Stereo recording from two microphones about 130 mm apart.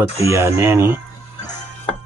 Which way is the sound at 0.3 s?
20° right (ahead or behind).